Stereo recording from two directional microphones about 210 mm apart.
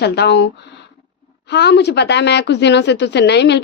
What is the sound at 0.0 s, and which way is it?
A woman's voice, 50° left (ahead or behind).